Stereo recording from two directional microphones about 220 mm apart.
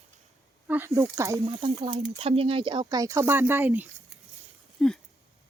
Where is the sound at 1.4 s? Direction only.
25° right (ahead or behind); by 3.8 s 10° right (ahead or behind).